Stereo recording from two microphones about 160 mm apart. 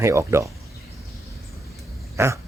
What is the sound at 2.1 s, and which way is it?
Dog, 15° right (ahead or behind).